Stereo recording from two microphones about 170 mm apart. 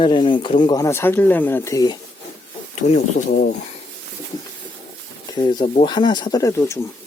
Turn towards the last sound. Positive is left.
turn(degrees=15)  # may be behind; listen again after turning